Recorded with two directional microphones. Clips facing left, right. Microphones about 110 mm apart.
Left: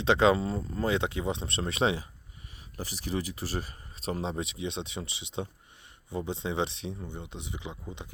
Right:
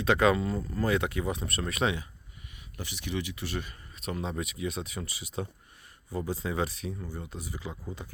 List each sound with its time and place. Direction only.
0.0 s speech: 25° left (ahead or behind)